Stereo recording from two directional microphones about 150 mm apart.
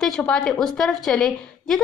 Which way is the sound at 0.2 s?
5° left (ahead or behind).